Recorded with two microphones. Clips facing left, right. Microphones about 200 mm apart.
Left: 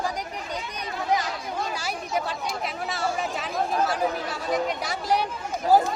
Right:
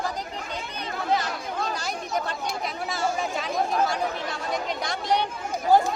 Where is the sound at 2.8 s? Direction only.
Centre (ahead or behind).